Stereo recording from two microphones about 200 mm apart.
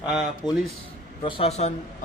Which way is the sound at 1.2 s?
25° left (ahead or behind).